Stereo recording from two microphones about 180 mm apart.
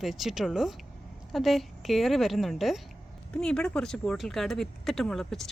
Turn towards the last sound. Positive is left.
turn(degrees=5)  # may be behind; listen again after turning